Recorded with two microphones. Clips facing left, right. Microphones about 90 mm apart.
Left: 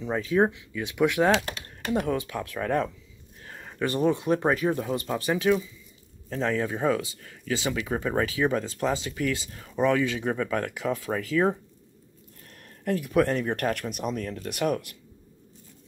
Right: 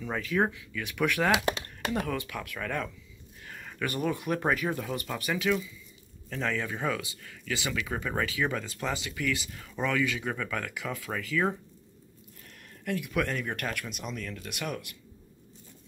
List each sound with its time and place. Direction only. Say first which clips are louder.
0.0 s speech: left 5 dB; 25° left (ahead or behind)
12.8 s speech: left 7 dB; 40° left (ahead or behind)